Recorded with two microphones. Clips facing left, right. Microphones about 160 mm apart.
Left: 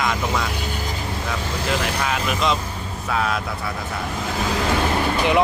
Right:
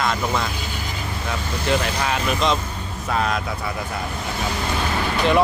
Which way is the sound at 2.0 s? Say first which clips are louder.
Right 1 dB; centre (ahead or behind).